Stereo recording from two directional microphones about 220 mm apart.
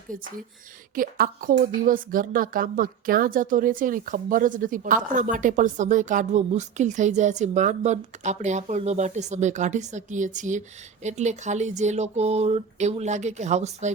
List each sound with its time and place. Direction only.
0.1 s speech: 40° right (ahead or behind)